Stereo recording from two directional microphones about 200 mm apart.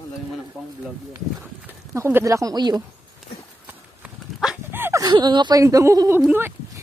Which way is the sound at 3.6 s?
5° right (ahead or behind).